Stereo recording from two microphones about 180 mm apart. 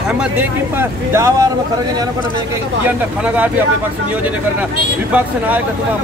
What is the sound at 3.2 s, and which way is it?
Speech, 10° right (ahead or behind).